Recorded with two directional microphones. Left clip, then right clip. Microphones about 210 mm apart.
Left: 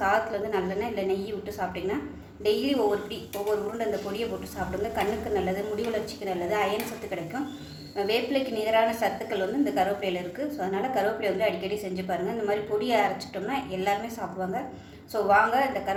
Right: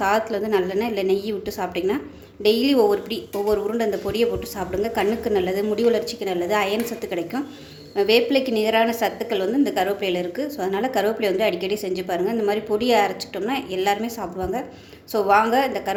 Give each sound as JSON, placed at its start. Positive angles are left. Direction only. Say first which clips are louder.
{"t": 0.0, "sound": "a woman's voice", "louder": "right 4 dB", "side_deg": -50}
{"t": 4.2, "sound": "a woman's voice", "louder": "right 9 dB", "side_deg": -50}
{"t": 15.1, "sound": "a woman's voice", "louder": "right 4 dB", "side_deg": -50}